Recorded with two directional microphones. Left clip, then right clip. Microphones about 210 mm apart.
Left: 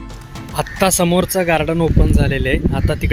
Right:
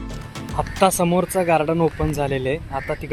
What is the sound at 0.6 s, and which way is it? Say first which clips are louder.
Speech: left 2 dB; 15° left (ahead or behind).